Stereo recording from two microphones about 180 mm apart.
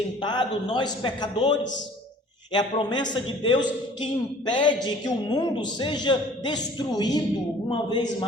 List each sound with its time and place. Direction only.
0.2 s speech: 25° left (ahead or behind)